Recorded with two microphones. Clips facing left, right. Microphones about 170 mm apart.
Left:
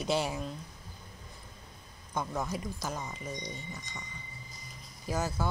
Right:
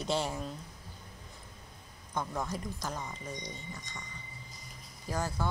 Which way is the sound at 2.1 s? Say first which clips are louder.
Left 1 dB; 5° left (ahead or behind).